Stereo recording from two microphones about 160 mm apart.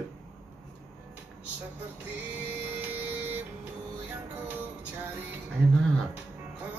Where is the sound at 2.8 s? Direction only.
10° right (ahead or behind).